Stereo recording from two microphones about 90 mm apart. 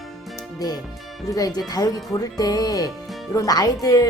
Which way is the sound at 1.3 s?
45° left (ahead or behind).